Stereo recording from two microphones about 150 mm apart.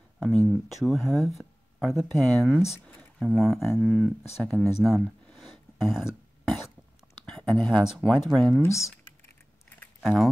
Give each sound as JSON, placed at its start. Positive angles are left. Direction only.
{"t": 0.2, "sound": "speech", "side_deg": 0}
{"t": 4.8, "sound": "a sound", "side_deg": 0}
{"t": 7.2, "sound": "speech", "side_deg": 5}
{"t": 8.6, "sound": "speech", "side_deg": 20}
{"t": 10.0, "sound": "speech", "side_deg": 0}